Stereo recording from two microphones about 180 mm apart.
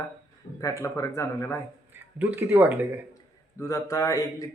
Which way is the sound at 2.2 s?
10° right (ahead or behind).